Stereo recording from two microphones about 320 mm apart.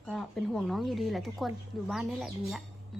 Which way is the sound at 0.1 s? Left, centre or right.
Centre.